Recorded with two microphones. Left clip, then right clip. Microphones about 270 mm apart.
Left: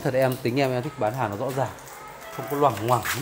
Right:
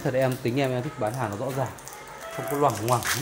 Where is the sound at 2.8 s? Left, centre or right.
Centre.